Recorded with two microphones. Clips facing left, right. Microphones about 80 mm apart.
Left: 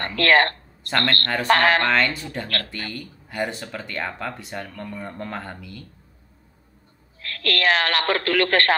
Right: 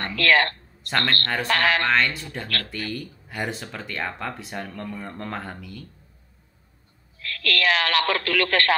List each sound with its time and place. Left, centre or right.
0.0 s speech: left
0.8 s speech: centre
1.5 s a man's voice: left
1.9 s speech: centre
2.4 s a man's voice: left
2.7 s speech: centre
7.2 s a man's voice: left